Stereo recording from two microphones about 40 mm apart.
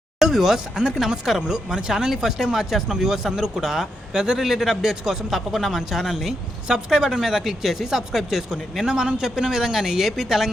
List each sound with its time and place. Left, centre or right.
0.2 s a sound: centre
0.9 s speech: centre
6.9 s speech: centre
8.8 s a man's voice: right; by 10.5 s centre